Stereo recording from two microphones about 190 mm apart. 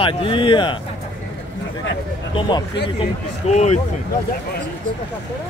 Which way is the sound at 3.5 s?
35° left (ahead or behind).